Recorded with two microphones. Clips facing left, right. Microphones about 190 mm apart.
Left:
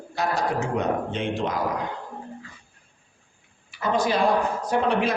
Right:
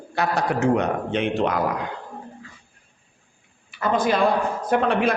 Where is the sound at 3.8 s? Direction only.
55° right (ahead or behind).